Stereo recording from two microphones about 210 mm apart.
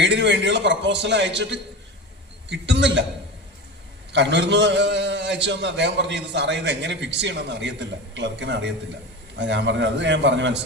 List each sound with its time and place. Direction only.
0.0 s a man's voice: 55° right (ahead or behind)
4.1 s a man's voice: 55° right (ahead or behind)